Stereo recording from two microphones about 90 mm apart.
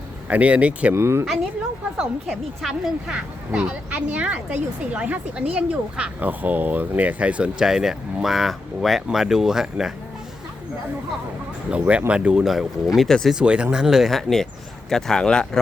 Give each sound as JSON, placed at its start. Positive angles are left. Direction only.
{"t": 0.3, "sound": "speech", "side_deg": -15}
{"t": 0.9, "sound": "speech", "side_deg": -30}
{"t": 2.6, "sound": "speech", "side_deg": -5}
{"t": 11.7, "sound": "speech", "side_deg": -15}
{"t": 13.3, "sound": "speech", "side_deg": -10}